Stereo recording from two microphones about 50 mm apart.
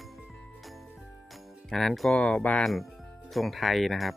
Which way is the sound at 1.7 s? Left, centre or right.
Centre.